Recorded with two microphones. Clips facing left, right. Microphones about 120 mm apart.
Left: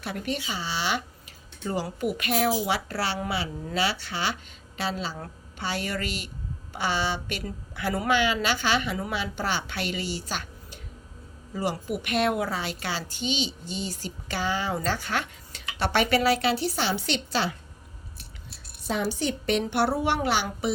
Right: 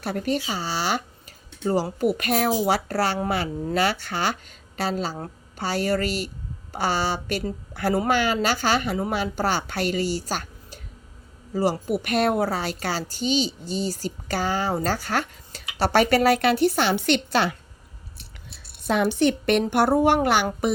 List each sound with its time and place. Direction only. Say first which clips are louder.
0.0 s a woman's voice: right 6 dB; 40° right (ahead or behind)
5.1 s a sound: right 4 dB; 30° right (ahead or behind)
5.6 s a woman's voice: right 7 dB; 40° right (ahead or behind); by 17.5 s 60° right (ahead or behind)
18.9 s a woman's voice: right 7 dB; 65° right (ahead or behind)